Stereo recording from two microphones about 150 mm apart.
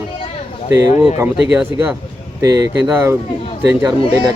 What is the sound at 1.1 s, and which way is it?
Speech, 10° right (ahead or behind).